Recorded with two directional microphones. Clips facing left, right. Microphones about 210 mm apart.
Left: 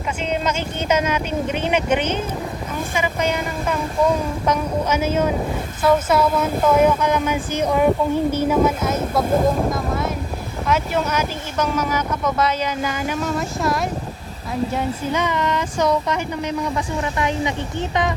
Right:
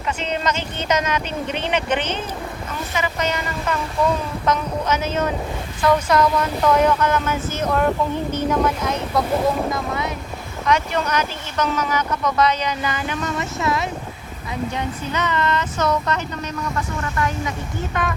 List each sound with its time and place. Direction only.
0.2 s speech: 10° left (ahead or behind)
9.2 s speech: 50° left (ahead or behind)
9.6 s speech: centre (ahead or behind)
14.8 s speech: 10° left (ahead or behind)